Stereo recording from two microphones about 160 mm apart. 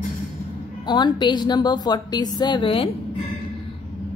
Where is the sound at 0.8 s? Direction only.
25° left (ahead or behind).